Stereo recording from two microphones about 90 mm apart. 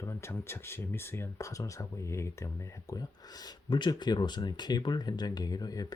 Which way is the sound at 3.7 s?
60° left (ahead or behind).